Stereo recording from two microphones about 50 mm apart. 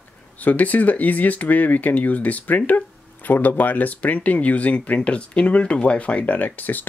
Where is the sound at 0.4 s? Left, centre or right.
Left.